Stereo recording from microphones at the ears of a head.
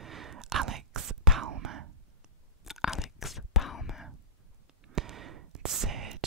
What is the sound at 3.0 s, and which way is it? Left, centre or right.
Whispering, left.